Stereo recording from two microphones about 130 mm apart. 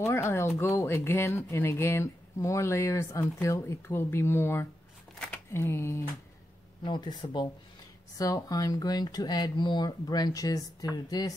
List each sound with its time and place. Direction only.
0.0 s speech: 20° left (ahead or behind)
6.8 s speech: 35° left (ahead or behind)